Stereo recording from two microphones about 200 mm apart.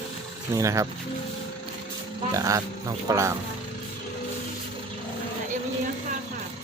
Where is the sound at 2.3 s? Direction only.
15° right (ahead or behind).